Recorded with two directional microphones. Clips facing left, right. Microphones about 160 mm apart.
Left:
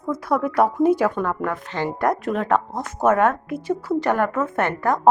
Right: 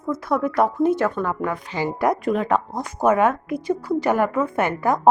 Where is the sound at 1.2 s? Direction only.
Centre (ahead or behind).